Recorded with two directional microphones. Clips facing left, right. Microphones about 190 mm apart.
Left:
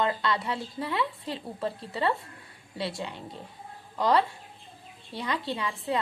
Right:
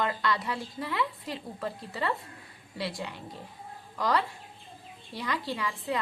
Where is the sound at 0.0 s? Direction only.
25° left (ahead or behind).